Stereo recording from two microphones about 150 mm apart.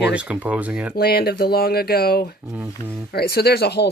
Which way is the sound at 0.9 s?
90° left.